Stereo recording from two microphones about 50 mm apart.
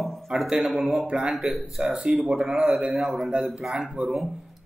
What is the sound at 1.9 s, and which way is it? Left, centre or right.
Speech, centre.